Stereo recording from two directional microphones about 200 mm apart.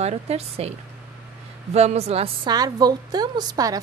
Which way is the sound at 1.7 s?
30° right (ahead or behind).